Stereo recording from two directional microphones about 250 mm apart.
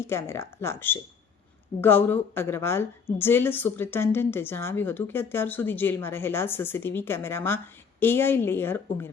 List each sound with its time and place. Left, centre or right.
0.0 s a woman's voice: centre